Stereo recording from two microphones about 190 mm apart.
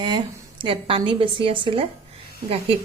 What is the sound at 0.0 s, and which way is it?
A woman's voice, 20° right (ahead or behind).